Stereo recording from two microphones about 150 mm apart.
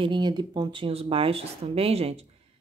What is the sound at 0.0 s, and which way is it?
A woman's voice, 30° right (ahead or behind).